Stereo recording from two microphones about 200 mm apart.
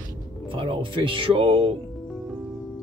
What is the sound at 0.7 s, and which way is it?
Speech, 25° right (ahead or behind).